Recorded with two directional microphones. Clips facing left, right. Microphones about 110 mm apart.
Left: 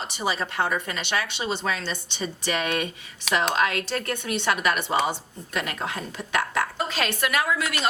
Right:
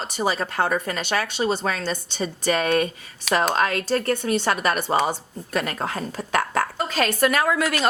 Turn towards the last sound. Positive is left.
turn(degrees=-45)  # may be behind; listen again after turning